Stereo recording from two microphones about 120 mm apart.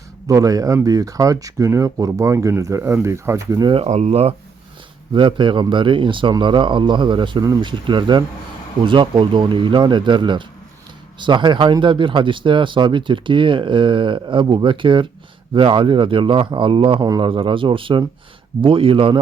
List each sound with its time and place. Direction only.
0.3 s speech: 30° right (ahead or behind)
3.8 s speech: 70° right (ahead or behind)
5.1 s speech: 45° right (ahead or behind)